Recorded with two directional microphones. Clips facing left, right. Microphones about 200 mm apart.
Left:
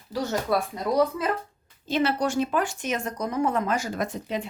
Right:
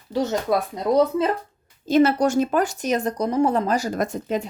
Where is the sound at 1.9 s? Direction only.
45° right (ahead or behind).